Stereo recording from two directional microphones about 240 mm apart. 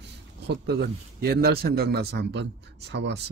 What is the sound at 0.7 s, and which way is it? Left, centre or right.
Speech, right.